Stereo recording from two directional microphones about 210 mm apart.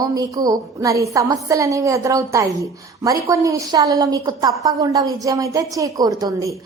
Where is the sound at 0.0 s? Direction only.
15° right (ahead or behind).